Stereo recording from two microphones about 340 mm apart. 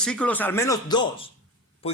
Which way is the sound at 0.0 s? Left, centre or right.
Centre.